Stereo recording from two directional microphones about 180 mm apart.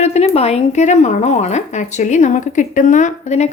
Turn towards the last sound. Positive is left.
turn(degrees=40)  # may be behind; listen again after turning